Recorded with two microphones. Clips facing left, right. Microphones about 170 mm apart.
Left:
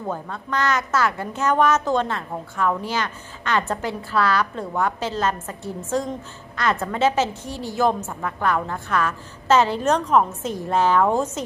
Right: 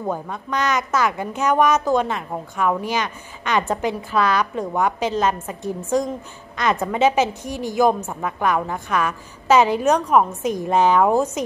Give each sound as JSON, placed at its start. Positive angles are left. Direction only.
{"t": 0.1, "sound": "a woman's voice", "side_deg": -15}